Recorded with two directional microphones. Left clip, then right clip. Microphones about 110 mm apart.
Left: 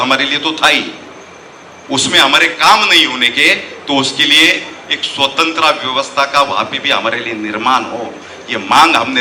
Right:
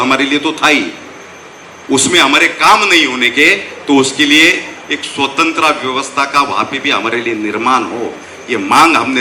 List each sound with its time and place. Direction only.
0.0 s a man's voice: 20° left (ahead or behind)
1.9 s a man's voice: 25° left (ahead or behind)